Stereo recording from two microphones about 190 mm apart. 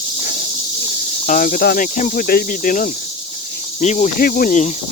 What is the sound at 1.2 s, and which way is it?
Speech, 45° left (ahead or behind).